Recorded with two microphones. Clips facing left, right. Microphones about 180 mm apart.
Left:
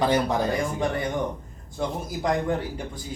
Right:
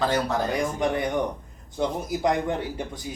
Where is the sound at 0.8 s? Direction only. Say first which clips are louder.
Right 2 dB; 15° right (ahead or behind).